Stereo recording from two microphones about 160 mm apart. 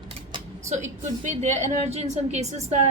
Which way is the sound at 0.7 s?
50° right (ahead or behind).